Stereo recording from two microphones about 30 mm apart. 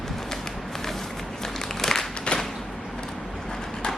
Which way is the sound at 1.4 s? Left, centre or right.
Centre.